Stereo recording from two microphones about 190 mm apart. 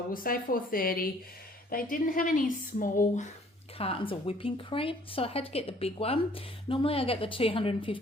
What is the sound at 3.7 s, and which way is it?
A woman's voice, 30° left (ahead or behind).